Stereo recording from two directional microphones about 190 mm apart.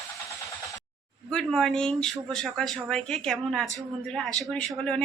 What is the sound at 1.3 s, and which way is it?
Speech, 5° left (ahead or behind).